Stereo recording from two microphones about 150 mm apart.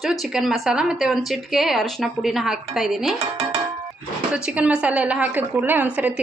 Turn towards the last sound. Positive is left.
turn(degrees=-10)  # may be behind; listen again after turning